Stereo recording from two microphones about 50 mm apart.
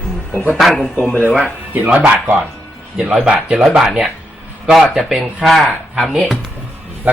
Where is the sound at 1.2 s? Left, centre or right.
Left.